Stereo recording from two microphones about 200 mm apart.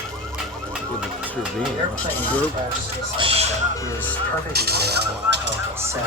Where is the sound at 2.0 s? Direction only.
5° left (ahead or behind).